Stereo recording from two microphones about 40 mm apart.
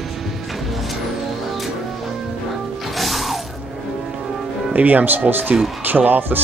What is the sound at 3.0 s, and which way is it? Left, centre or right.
Music, centre.